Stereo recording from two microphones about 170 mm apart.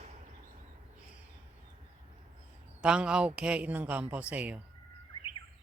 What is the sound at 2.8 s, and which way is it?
Speech, 5° right (ahead or behind).